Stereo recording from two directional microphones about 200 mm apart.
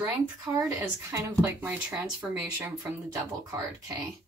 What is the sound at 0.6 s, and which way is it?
Speech, 15° right (ahead or behind).